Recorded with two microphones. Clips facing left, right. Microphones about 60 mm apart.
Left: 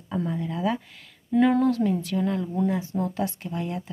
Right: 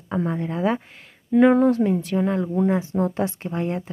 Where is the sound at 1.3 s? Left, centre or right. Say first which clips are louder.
Right 5 dB; right.